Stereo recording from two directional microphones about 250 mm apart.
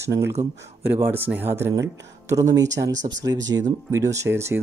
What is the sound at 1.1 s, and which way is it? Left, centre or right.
Speech, centre.